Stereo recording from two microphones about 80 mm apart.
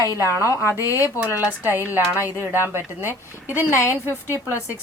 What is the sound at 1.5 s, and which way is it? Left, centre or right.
Speech, right.